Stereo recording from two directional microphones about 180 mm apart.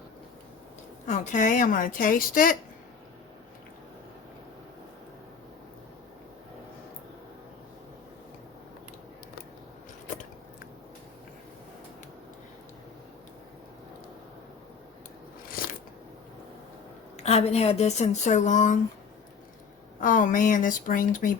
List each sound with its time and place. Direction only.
1.0 s a woman's voice: 45° left (ahead or behind)
17.2 s speech: 35° left (ahead or behind)
20.0 s a woman's voice: 45° left (ahead or behind)